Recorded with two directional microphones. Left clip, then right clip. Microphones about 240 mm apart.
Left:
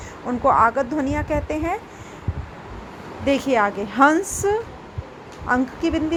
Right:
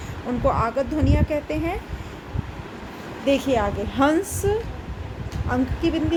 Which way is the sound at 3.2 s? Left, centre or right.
Centre.